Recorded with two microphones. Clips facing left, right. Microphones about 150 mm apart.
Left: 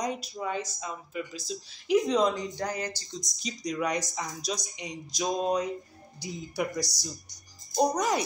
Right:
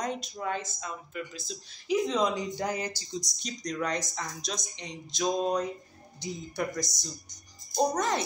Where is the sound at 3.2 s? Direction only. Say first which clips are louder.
Left 2 dB; centre (ahead or behind).